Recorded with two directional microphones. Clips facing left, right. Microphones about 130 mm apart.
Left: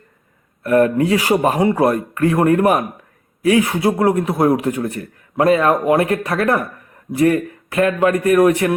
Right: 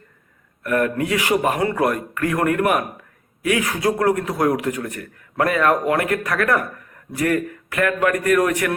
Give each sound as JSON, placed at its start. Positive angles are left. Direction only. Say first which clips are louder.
{"t": 0.6, "sound": "a man's voice", "louder": "left 6 dB", "side_deg": 30}